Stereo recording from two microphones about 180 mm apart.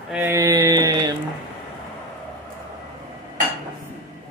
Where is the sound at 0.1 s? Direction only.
15° right (ahead or behind).